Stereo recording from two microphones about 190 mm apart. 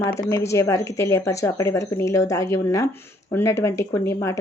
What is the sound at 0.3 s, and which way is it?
Speech, 15° left (ahead or behind).